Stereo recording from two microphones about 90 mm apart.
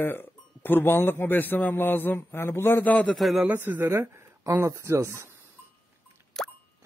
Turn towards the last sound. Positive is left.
turn(degrees=5)  # may be behind; listen again after turning